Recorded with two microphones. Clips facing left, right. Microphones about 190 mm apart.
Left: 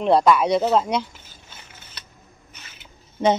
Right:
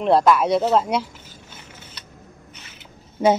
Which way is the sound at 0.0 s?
Centre (ahead or behind).